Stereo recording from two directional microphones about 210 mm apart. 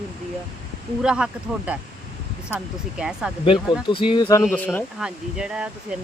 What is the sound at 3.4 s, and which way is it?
Speech, 25° left (ahead or behind).